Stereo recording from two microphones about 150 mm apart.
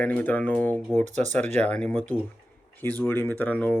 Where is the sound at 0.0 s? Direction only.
10° left (ahead or behind).